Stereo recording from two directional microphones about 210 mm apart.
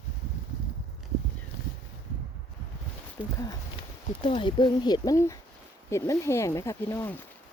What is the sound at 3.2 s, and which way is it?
Speech, 5° right (ahead or behind).